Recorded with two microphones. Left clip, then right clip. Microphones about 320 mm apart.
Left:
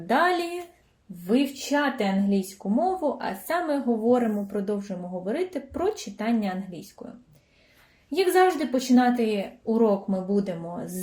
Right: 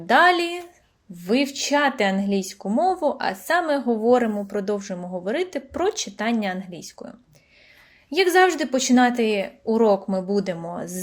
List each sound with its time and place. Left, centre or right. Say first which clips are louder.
0.1 s speech: right 6 dB; right
1.5 s speech: right 5 dB; right
8.1 s speech: right 3 dB; right